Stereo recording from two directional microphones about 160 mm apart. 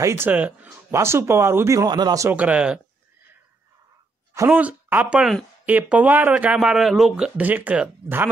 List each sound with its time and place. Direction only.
0.0 s speech: 15° right (ahead or behind)
2.3 s speech: 10° right (ahead or behind)
4.3 s speech: 15° right (ahead or behind)